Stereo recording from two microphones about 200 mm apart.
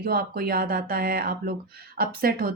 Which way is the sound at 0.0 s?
50° right (ahead or behind).